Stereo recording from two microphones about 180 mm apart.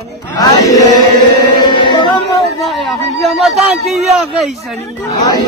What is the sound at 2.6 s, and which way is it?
Speech, centre (ahead or behind).